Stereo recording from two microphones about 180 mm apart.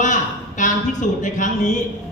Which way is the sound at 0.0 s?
45° left (ahead or behind).